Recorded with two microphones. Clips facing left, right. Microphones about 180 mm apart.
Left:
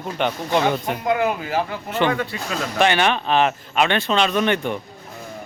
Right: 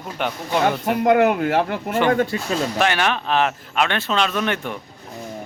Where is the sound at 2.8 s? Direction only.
Centre (ahead or behind).